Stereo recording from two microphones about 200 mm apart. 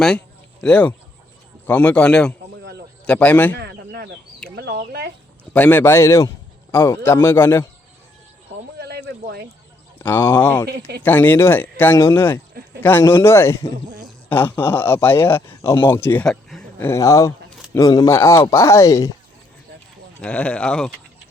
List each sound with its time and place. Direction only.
0.6 s a man's voice: 5° left (ahead or behind)
3.6 s a sound: 55° right (ahead or behind)
4.5 s speech: 55° right (ahead or behind)
5.5 s a man's voice: 10° left (ahead or behind)
8.8 s a sound: 55° right (ahead or behind)
10.0 s a man's voice: 10° left (ahead or behind)
10.7 s speech: 55° right (ahead or behind)
11.0 s a man's voice: 10° left (ahead or behind)
20.2 s speech: 5° left (ahead or behind)